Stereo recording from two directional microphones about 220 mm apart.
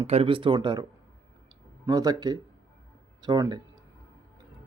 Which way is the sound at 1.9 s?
15° right (ahead or behind).